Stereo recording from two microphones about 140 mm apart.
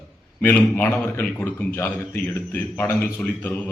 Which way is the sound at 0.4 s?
15° left (ahead or behind).